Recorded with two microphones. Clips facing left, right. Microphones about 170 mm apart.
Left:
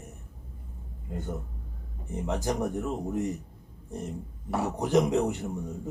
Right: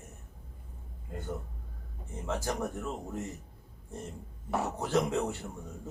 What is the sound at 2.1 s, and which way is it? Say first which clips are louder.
Speech: left 4 dB; 20° left (ahead or behind).